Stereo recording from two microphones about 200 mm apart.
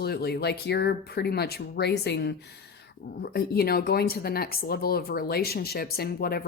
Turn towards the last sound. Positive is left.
turn(degrees=50)  # may be behind; listen again after turning